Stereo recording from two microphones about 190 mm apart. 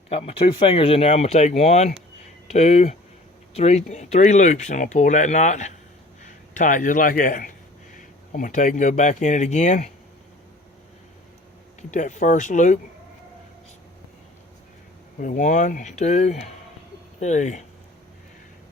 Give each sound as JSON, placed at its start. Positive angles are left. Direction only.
{"t": 0.1, "sound": "a man's voice", "side_deg": 30}
{"t": 11.8, "sound": "speech", "side_deg": 40}
{"t": 15.2, "sound": "speech", "side_deg": 40}